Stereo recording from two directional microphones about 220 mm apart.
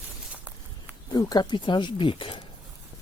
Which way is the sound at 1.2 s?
20° left (ahead or behind).